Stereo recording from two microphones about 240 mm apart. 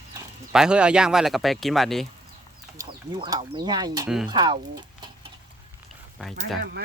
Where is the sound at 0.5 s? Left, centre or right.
Centre.